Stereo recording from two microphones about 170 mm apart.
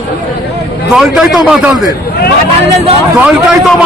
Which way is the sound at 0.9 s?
5° right (ahead or behind).